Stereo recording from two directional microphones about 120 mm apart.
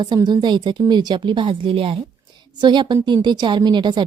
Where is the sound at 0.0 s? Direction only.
35° right (ahead or behind).